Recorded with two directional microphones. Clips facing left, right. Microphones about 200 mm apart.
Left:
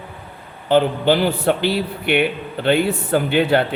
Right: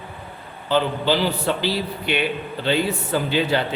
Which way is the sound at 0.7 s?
55° left (ahead or behind).